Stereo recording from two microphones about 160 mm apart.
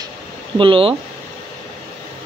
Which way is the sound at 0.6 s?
35° right (ahead or behind).